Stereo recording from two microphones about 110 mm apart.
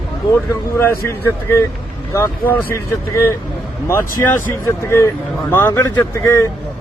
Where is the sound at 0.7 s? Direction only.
20° left (ahead or behind).